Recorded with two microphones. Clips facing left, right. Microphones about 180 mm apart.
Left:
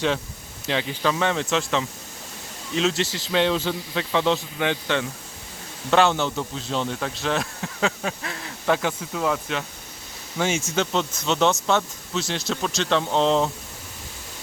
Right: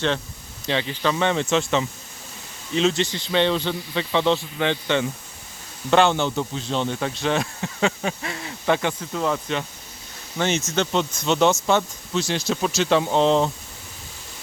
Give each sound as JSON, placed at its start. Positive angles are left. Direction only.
{"t": 0.7, "sound": "a man's voice", "side_deg": 5}